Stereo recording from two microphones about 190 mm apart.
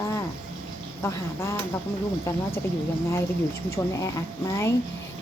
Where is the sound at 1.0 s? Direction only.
15° left (ahead or behind).